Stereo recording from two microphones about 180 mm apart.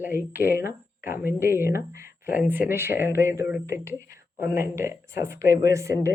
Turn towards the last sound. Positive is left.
turn(degrees=-15)  # may be behind; listen again after turning